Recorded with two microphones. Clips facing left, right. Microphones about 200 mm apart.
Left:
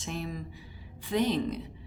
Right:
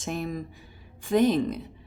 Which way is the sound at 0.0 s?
50° right (ahead or behind).